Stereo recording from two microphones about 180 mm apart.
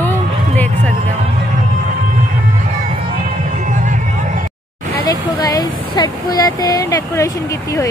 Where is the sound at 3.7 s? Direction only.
45° right (ahead or behind).